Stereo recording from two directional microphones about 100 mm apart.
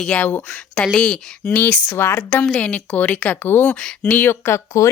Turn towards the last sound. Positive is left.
turn(degrees=30)  # may be behind; listen again after turning